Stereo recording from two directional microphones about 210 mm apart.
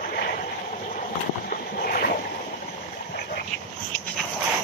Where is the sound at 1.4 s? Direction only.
45° left (ahead or behind).